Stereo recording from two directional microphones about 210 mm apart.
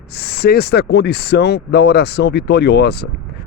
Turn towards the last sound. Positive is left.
turn(degrees=50)  # may be behind; listen again after turning